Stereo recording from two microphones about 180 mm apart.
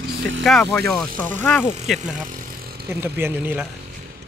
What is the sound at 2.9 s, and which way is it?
Speech, 15° right (ahead or behind).